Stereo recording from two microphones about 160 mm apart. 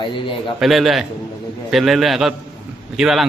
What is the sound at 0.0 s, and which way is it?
Speech, 30° left (ahead or behind).